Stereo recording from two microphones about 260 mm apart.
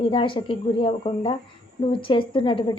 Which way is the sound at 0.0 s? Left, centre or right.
Centre.